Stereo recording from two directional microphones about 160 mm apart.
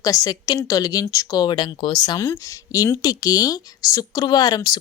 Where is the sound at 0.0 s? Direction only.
20° left (ahead or behind).